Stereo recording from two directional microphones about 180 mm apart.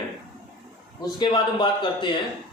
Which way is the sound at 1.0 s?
25° left (ahead or behind).